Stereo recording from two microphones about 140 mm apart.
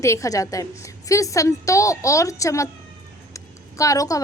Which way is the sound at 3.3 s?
25° left (ahead or behind).